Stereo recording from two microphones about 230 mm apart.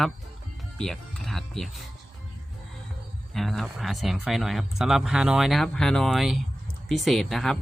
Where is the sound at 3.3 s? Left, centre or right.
Centre.